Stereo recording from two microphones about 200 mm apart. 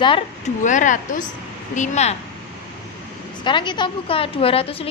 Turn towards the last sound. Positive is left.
turn(degrees=30)  # may be behind; listen again after turning